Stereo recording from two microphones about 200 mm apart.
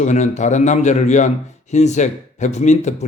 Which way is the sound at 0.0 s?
35° left (ahead or behind).